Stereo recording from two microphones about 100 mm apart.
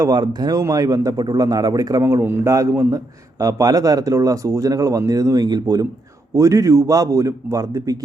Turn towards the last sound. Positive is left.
turn(degrees=-35)  # may be behind; listen again after turning